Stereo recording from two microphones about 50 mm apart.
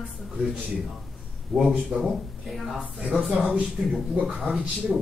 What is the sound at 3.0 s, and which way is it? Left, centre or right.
Speech, centre.